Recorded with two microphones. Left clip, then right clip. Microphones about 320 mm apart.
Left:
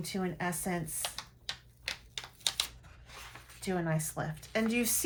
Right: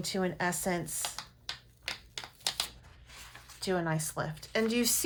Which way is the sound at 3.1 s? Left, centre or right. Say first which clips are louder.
Left 1 dB; centre.